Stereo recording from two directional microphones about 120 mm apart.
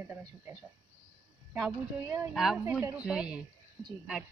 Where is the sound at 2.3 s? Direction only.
5° right (ahead or behind).